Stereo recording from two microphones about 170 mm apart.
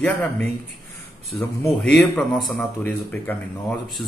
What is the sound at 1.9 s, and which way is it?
Speech, centre (ahead or behind).